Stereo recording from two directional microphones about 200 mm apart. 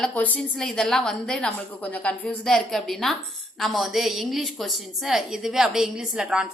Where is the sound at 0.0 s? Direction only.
5° left (ahead or behind).